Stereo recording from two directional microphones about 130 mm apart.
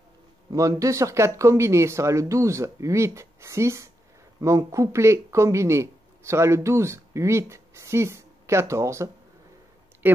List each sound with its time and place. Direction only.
0.5 s speech: 25° right (ahead or behind)